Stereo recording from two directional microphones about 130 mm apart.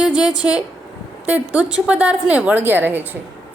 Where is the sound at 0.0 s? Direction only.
5° right (ahead or behind).